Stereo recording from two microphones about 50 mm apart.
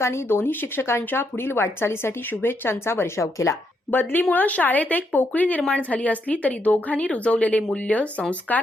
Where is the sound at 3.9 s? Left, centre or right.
Left.